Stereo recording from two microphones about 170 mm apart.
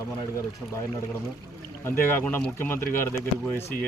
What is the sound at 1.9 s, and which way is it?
Speech, 10° left (ahead or behind).